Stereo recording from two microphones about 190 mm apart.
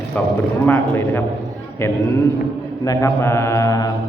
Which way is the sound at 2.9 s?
15° left (ahead or behind).